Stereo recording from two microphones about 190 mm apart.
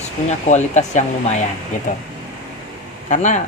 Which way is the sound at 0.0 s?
35° left (ahead or behind).